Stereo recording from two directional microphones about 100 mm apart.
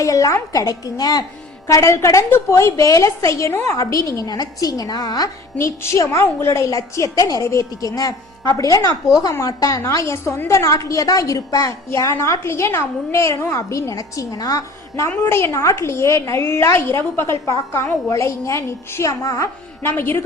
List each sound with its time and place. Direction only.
0.0 s a woman's voice: 35° left (ahead or behind)
1.6 s a woman's voice: 25° left (ahead or behind)
5.5 s a woman's voice: 30° left (ahead or behind)